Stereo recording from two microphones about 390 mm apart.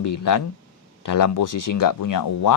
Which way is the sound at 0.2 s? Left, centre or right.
Left.